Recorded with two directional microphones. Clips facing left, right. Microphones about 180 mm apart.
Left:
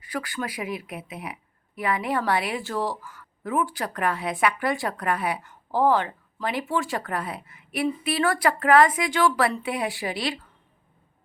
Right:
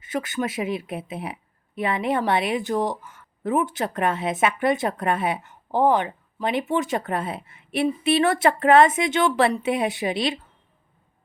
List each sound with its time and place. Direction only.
0.0 s speech: 20° right (ahead or behind)